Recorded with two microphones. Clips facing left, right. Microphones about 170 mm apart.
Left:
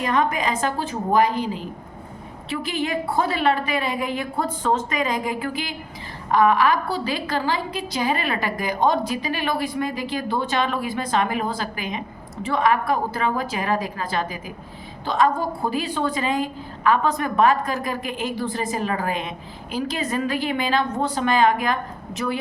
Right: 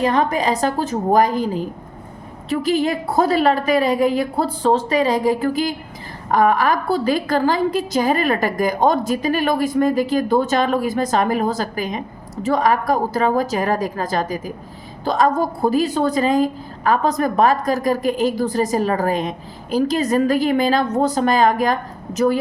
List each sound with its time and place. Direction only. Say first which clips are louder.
0.0 s a woman's voice: right 4 dB; 35° right (ahead or behind)